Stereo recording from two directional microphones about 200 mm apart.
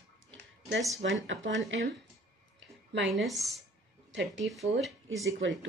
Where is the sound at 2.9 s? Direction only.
65° right (ahead or behind).